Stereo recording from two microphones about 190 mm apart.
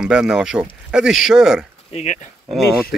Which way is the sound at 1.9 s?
40° left (ahead or behind).